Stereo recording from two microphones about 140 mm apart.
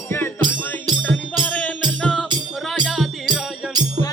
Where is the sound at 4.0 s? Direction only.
50° right (ahead or behind).